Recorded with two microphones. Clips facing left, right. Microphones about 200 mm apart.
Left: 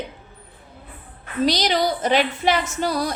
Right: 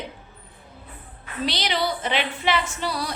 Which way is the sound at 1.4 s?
40° left (ahead or behind).